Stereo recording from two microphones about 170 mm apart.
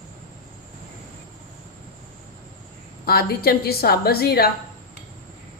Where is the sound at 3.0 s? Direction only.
65° left (ahead or behind).